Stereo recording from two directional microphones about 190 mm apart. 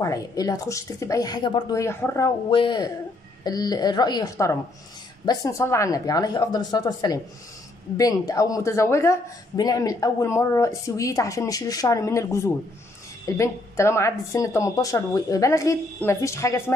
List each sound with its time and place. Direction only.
0.0 s speech: 20° left (ahead or behind)